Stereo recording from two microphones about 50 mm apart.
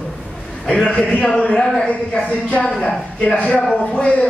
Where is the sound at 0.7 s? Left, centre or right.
Left.